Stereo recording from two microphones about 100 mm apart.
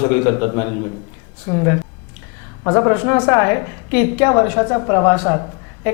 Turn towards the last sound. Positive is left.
turn(degrees=30)  # may be behind; listen again after turning